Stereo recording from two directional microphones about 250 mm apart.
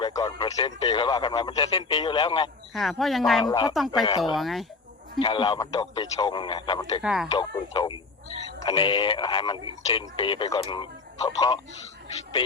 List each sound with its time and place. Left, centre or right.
0.0 s speech: centre
2.7 s speech: centre
3.4 s speech: centre
3.8 s speech: centre
5.2 s speech: centre
7.0 s speech: centre
7.3 s speech: centre